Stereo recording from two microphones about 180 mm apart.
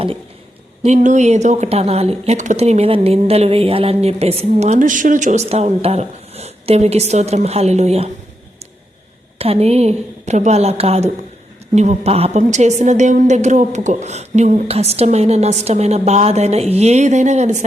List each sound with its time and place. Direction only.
0.9 s speech: 40° right (ahead or behind)
9.4 s speech: 35° right (ahead or behind)